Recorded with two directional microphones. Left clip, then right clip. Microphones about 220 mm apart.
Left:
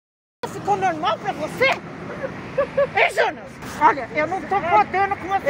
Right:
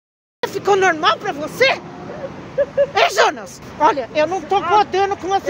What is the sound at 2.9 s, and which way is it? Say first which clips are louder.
Vehicle: right 5 dB; 50° right (ahead or behind).